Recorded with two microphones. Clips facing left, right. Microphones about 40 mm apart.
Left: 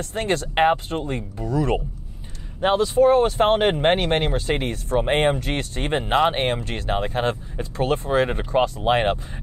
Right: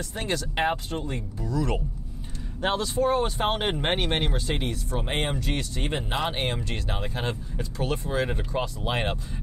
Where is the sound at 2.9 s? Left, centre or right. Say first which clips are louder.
Left 9 dB; left.